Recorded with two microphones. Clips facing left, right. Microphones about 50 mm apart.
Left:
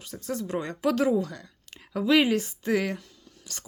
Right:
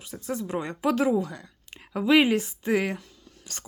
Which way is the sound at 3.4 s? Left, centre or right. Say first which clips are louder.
Right 1 dB; right.